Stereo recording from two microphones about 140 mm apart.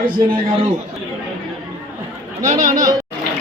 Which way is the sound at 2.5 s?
25° right (ahead or behind).